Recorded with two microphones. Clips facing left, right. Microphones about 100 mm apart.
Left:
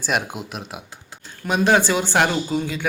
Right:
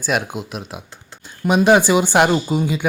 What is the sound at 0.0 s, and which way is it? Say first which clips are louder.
Speech: right 3 dB; centre (ahead or behind).